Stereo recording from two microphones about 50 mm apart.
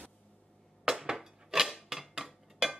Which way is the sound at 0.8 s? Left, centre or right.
Centre.